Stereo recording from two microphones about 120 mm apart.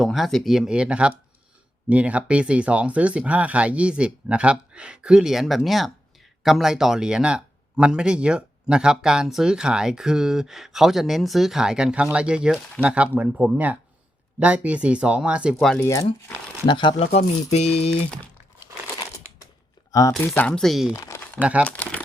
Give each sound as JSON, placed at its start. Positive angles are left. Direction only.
{"t": 0.0, "sound": "speech", "side_deg": 0}
{"t": 15.8, "sound": "speech", "side_deg": 30}
{"t": 16.6, "sound": "speech", "side_deg": 40}
{"t": 17.0, "sound": "speech", "side_deg": 60}
{"t": 19.9, "sound": "speech", "side_deg": 30}
{"t": 20.1, "sound": "speech", "side_deg": 10}
{"t": 20.6, "sound": "speech", "side_deg": 0}
{"t": 20.9, "sound": "speech", "side_deg": 25}
{"t": 21.4, "sound": "speech", "side_deg": -10}
{"t": 21.7, "sound": "speech", "side_deg": 10}